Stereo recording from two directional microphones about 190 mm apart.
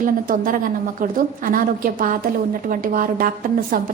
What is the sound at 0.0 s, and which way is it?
A woman's voice, 45° right (ahead or behind).